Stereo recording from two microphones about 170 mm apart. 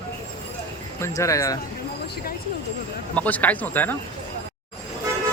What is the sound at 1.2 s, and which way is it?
Speech, 20° left (ahead or behind).